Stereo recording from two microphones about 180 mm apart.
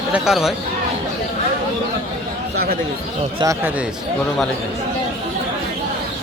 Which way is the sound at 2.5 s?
60° right (ahead or behind).